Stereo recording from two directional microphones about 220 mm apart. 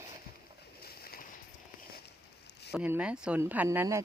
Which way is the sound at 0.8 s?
45° left (ahead or behind).